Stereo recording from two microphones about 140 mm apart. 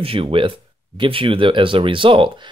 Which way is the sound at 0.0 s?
40° right (ahead or behind).